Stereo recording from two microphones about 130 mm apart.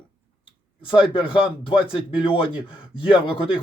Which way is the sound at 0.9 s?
40° left (ahead or behind).